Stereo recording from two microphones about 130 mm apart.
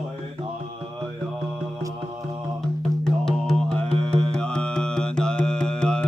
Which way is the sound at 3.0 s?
5° left (ahead or behind).